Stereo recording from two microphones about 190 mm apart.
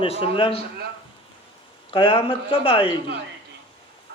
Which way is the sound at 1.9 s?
30° left (ahead or behind).